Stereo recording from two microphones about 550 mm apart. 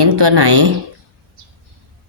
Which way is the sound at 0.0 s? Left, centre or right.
Right.